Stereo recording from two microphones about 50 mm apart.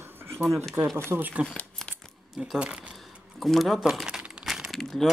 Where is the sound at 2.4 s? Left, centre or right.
Right.